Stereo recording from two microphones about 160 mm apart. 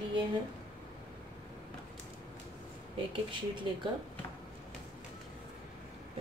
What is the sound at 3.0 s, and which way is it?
Speech, 30° right (ahead or behind).